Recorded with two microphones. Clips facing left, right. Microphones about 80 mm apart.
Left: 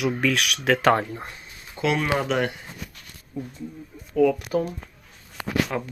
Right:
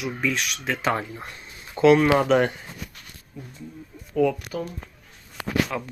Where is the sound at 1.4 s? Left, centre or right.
Centre.